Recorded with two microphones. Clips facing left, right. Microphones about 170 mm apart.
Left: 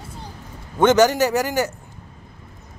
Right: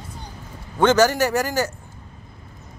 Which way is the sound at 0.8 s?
15° left (ahead or behind).